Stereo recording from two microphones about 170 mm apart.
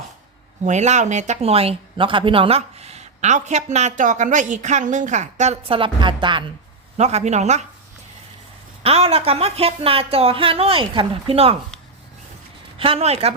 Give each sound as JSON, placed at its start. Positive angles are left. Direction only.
{"t": 0.6, "sound": "speech", "side_deg": -45}
{"t": 6.9, "sound": "speech", "side_deg": -40}
{"t": 8.8, "sound": "speech", "side_deg": -35}
{"t": 12.8, "sound": "speech", "side_deg": -35}